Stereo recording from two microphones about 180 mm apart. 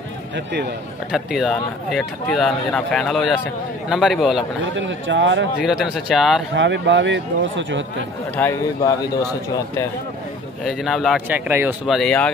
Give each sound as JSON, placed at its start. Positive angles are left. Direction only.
{"t": 1.1, "sound": "speech", "side_deg": 0}
{"t": 4.7, "sound": "speech", "side_deg": -90}
{"t": 5.6, "sound": "speech", "side_deg": -5}
{"t": 6.5, "sound": "speech", "side_deg": -80}
{"t": 8.4, "sound": "speech", "side_deg": 15}
{"t": 10.6, "sound": "speech", "side_deg": 0}
{"t": 12.0, "sound": "speech", "side_deg": 5}